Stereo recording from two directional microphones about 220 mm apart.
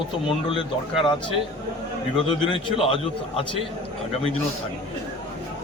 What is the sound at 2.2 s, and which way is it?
Speech, 25° left (ahead or behind).